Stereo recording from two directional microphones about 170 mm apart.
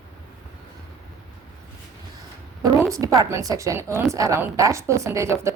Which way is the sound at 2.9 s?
20° right (ahead or behind).